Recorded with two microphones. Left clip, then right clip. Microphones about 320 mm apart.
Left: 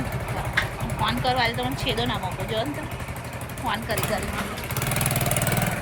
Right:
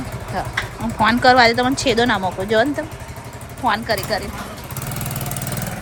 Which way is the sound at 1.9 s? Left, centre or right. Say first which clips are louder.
Right 9 dB; right.